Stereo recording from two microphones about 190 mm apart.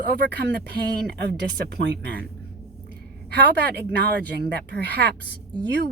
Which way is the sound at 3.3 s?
60° right (ahead or behind).